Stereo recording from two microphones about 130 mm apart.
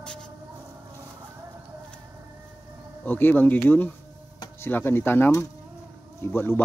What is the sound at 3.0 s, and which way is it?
Speech, 15° left (ahead or behind).